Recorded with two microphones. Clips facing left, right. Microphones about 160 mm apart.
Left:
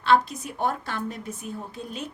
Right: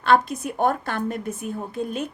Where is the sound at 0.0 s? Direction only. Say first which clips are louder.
Right 2 dB; 50° right (ahead or behind).